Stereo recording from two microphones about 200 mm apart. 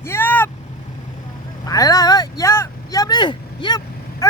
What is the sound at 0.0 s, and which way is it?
Vehicle, 10° left (ahead or behind).